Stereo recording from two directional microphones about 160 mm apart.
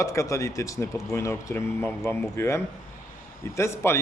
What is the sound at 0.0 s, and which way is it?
Speech, 20° left (ahead or behind).